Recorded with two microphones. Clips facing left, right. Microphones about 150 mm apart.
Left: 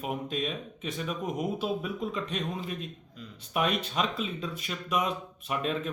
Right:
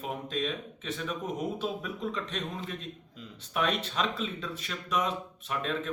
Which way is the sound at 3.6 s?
10° left (ahead or behind).